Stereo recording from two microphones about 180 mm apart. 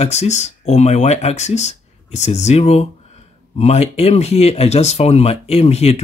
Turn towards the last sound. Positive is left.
turn(degrees=35)  # may be behind; listen again after turning